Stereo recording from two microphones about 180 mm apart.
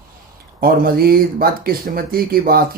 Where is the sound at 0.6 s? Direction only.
55° right (ahead or behind).